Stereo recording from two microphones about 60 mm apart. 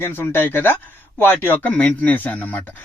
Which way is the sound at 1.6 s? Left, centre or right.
Left.